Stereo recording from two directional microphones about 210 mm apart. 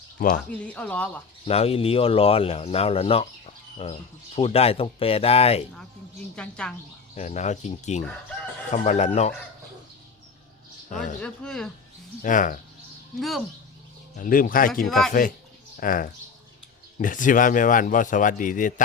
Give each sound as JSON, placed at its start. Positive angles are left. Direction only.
{"t": 0.5, "sound": "speech", "side_deg": 5}
{"t": 1.5, "sound": "speech", "side_deg": 30}
{"t": 6.3, "sound": "speech", "side_deg": 5}
{"t": 7.2, "sound": "speech", "side_deg": 35}
{"t": 10.8, "sound": "speech", "side_deg": 35}
{"t": 11.2, "sound": "speech", "side_deg": 5}
{"t": 12.2, "sound": "speech", "side_deg": 40}
{"t": 13.1, "sound": "speech", "side_deg": 0}
{"t": 14.2, "sound": "speech", "side_deg": 40}
{"t": 14.8, "sound": "speech", "side_deg": 0}
{"t": 15.8, "sound": "speech", "side_deg": 40}